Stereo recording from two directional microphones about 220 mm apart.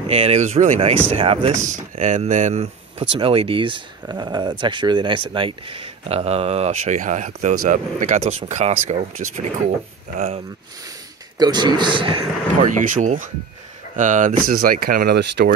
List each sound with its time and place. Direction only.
0.0 s speech: 25° right (ahead or behind)
11.3 s speech: 20° right (ahead or behind)
12.6 s speech: 35° right (ahead or behind)